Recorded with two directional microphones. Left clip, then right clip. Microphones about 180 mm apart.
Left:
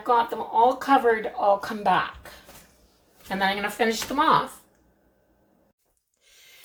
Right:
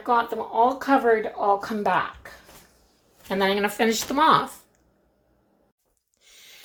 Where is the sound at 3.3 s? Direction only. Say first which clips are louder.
Right 2 dB; 50° right (ahead or behind).